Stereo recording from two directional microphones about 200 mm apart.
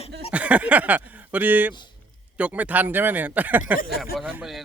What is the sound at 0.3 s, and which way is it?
Speech, 5° right (ahead or behind).